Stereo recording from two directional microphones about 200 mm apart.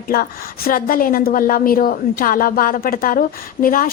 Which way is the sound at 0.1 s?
45° left (ahead or behind).